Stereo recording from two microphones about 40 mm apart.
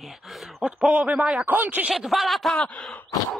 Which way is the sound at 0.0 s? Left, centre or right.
Centre.